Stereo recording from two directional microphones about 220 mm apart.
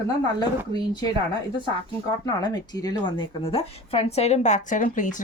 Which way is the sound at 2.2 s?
20° left (ahead or behind).